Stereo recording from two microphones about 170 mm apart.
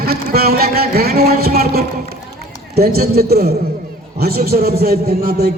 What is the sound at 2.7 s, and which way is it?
A man's voice, 65° right (ahead or behind).